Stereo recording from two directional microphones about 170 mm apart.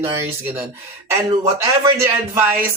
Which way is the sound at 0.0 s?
15° right (ahead or behind).